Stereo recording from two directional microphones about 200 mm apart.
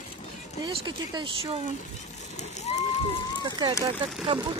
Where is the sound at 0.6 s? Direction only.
20° right (ahead or behind).